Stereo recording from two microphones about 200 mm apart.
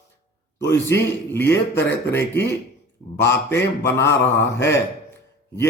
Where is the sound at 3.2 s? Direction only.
15° left (ahead or behind).